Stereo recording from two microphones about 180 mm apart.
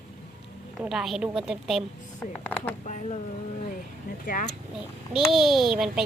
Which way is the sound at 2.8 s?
40° left (ahead or behind).